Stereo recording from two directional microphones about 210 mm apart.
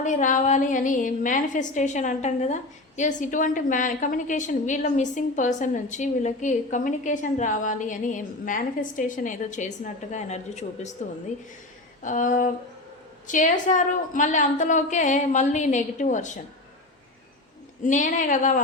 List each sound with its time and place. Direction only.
0.0 s a woman's voice: 35° left (ahead or behind)
12.0 s a woman's voice: 40° left (ahead or behind)
17.8 s a woman's voice: 35° left (ahead or behind)